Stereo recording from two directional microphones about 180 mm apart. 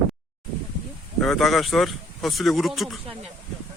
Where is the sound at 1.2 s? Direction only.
Centre (ahead or behind).